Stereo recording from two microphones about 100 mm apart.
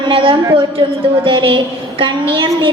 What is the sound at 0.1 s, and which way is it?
A woman's voice, 60° right (ahead or behind).